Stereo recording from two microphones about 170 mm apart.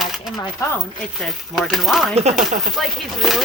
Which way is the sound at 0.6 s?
20° left (ahead or behind).